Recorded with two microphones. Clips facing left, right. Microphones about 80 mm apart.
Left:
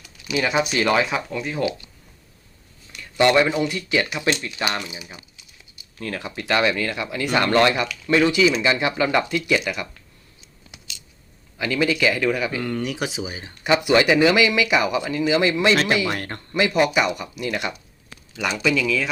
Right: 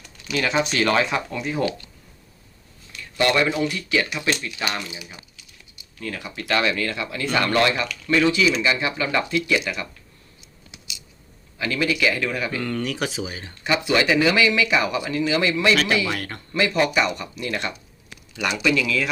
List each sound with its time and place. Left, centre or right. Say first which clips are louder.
0.0 s speech: left 1 dB; centre
2.9 s speech: left 4 dB; left
5.0 s a sound: left 1 dB; left
6.0 s speech: left 2 dB; left
6.2 s speech: left 2 dB; left
11.5 s speech: left 2 dB; left
12.2 s speech: left 3 dB; centre; by 16.6 s left
16.6 s speech: left 2 dB; left
16.8 s speech: left 1 dB; centre
18.4 s speech: even; centre